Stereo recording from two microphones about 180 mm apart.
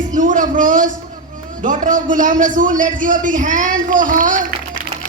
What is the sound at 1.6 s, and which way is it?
A man's voice, 45° right (ahead or behind).